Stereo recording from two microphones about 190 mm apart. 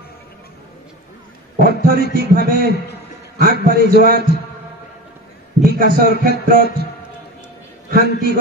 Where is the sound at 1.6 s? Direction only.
50° right (ahead or behind).